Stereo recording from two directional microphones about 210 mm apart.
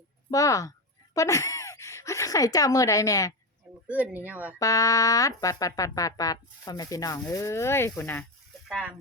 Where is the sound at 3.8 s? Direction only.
10° right (ahead or behind).